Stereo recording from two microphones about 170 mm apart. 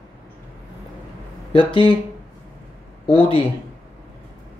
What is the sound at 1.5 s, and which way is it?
Speech, 30° left (ahead or behind).